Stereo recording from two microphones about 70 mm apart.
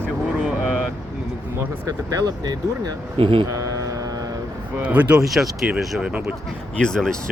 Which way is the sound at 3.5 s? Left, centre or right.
Right.